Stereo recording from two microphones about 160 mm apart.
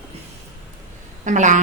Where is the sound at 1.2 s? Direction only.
50° right (ahead or behind).